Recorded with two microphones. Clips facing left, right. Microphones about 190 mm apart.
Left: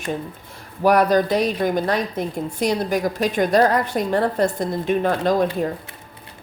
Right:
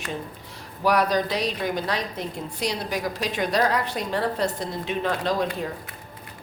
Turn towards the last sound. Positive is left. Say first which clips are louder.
# left 6 dB
turn(degrees=45)  # may be behind; listen again after turning